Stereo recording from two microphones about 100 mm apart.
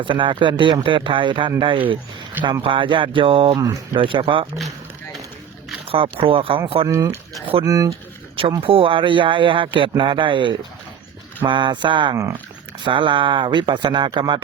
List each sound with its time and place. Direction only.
0.0 s speech: 60° right (ahead or behind)
5.8 s speech: 70° right (ahead or behind)
6.8 s speech: 35° right (ahead or behind)
8.6 s speech: 65° right (ahead or behind)
12.1 s speech: 30° right (ahead or behind)
12.8 s speech: 55° right (ahead or behind)